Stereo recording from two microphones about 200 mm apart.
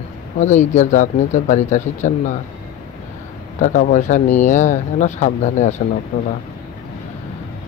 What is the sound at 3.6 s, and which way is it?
Speech, 40° left (ahead or behind).